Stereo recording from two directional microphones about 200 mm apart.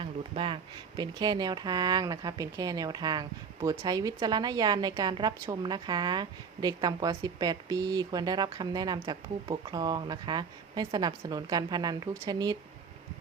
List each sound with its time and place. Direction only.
0.0 s speech: 25° right (ahead or behind)